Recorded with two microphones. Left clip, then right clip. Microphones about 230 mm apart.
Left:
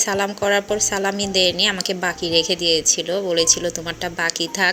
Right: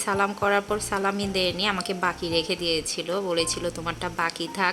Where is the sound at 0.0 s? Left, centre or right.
Centre.